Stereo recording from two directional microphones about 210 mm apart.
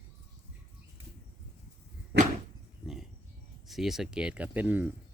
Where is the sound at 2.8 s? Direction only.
Centre (ahead or behind).